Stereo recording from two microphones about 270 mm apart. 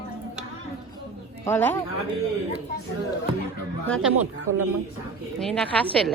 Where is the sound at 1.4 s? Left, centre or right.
Centre.